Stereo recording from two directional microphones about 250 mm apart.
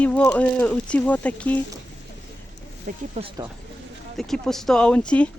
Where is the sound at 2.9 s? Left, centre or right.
Right.